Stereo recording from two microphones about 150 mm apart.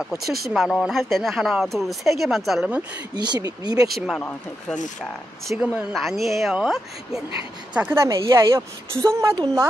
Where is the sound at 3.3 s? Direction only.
25° right (ahead or behind).